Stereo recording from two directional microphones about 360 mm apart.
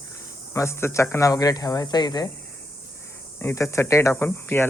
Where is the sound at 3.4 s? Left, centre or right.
Centre.